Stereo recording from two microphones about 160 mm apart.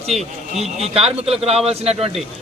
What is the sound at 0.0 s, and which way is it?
A man's voice, 40° right (ahead or behind).